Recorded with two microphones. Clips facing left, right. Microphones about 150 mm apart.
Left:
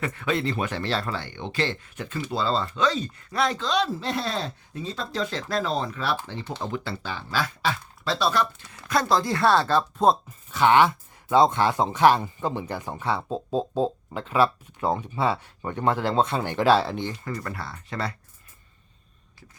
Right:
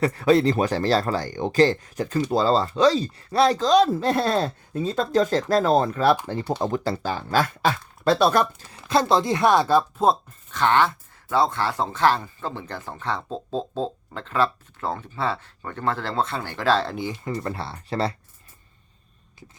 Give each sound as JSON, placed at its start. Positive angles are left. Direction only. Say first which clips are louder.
{"t": 0.0, "sound": "speech", "louder": "right 8 dB", "side_deg": -35}
{"t": 8.9, "sound": "speech", "louder": "right 3 dB", "side_deg": -25}
{"t": 10.5, "sound": "speech", "louder": "left 2 dB", "side_deg": 10}
{"t": 16.9, "sound": "speech", "louder": "right 1 dB", "side_deg": -5}
{"t": 17.2, "sound": "speech", "louder": "right 4 dB", "side_deg": -25}